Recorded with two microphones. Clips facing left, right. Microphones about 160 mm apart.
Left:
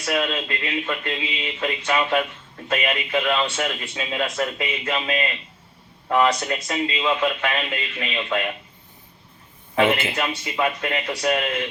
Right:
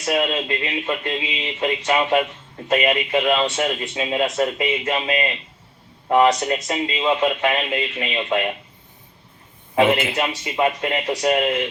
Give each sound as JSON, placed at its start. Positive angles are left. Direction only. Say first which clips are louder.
{"t": 0.0, "sound": "speech", "louder": "right 3 dB", "side_deg": -25}
{"t": 10.2, "sound": "speech", "louder": "right 3 dB", "side_deg": -25}